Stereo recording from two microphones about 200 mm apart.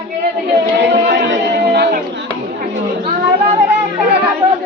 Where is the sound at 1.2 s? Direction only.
55° right (ahead or behind).